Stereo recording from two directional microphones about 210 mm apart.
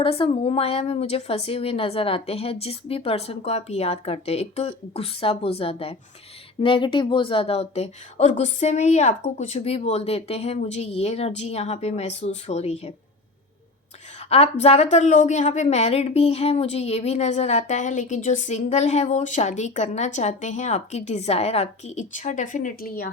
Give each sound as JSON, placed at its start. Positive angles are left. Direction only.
{"t": 0.0, "sound": "a woman's voice", "side_deg": 25}
{"t": 14.3, "sound": "a woman's voice", "side_deg": 30}